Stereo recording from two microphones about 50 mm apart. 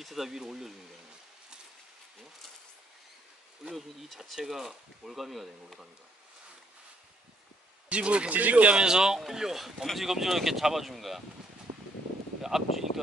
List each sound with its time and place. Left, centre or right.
0.0 s speech: centre
3.7 s speech: centre
7.9 s speech: right
8.7 s speech: centre
12.4 s speech: centre